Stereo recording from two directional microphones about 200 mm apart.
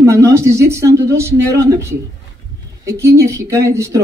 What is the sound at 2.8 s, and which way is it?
Speech, 15° right (ahead or behind).